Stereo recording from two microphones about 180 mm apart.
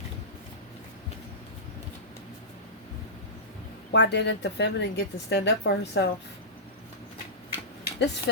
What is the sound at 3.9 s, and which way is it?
Speech, 75° left (ahead or behind).